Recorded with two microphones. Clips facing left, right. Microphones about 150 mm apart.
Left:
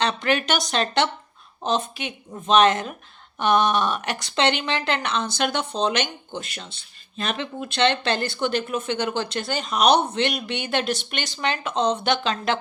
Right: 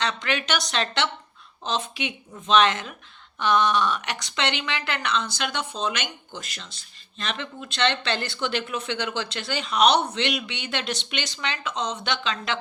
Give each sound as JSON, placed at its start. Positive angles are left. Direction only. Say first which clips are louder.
{"t": 0.2, "sound": "speech", "louder": "left 4 dB", "side_deg": 45}
{"t": 6.7, "sound": "speech", "louder": "even", "side_deg": -35}
{"t": 7.2, "sound": "speech", "louder": "left 5 dB", "side_deg": 50}